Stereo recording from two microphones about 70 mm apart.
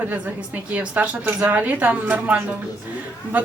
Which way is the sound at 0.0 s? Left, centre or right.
Right.